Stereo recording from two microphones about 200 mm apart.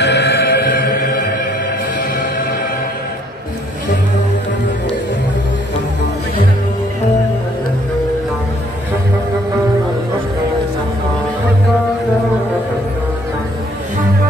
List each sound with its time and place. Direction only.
0.0 s music: 55° left (ahead or behind)